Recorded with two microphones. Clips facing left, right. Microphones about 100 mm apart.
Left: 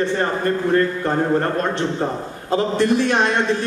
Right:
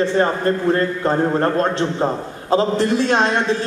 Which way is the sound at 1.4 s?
25° right (ahead or behind).